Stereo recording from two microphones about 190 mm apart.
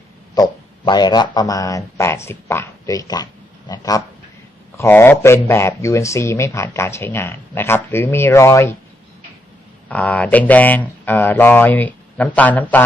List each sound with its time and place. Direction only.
0.3 s speech: 20° left (ahead or behind)
9.9 s speech: 10° left (ahead or behind)